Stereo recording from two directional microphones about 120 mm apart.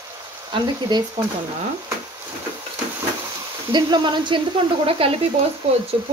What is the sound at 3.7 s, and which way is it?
Speech, 40° right (ahead or behind).